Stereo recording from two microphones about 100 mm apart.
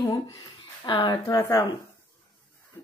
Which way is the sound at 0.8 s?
50° left (ahead or behind).